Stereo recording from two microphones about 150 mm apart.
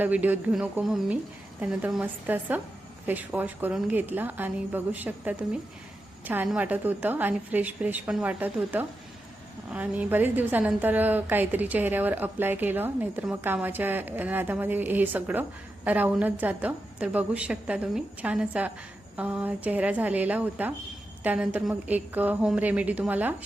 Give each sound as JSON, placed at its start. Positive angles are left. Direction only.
{"t": 0.0, "sound": "a woman's voice", "side_deg": -10}